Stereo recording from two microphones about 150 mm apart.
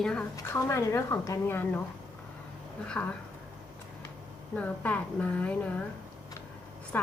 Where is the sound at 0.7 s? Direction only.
20° left (ahead or behind).